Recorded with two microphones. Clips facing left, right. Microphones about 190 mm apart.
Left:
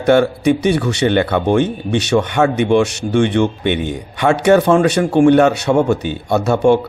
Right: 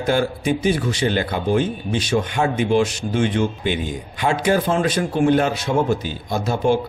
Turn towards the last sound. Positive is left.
turn(degrees=70)  # may be behind; listen again after turning